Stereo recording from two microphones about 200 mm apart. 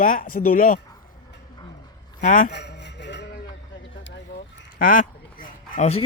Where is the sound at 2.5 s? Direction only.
60° left (ahead or behind).